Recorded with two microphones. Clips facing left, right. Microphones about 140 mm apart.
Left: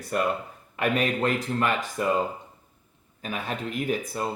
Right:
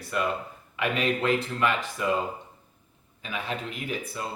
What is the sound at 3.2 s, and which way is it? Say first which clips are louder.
Speech: left 2 dB; 45° left (ahead or behind).